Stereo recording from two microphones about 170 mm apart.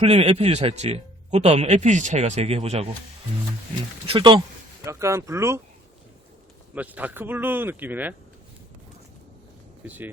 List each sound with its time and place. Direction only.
0.0 s speech: 35° right (ahead or behind)
4.0 s speech: 30° right (ahead or behind)
6.7 s speech: 10° right (ahead or behind)
9.8 s speech: 10° right (ahead or behind)